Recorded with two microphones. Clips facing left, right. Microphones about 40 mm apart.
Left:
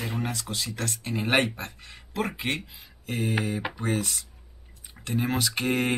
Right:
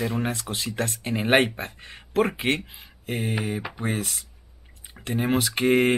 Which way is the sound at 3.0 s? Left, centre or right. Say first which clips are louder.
Even; right.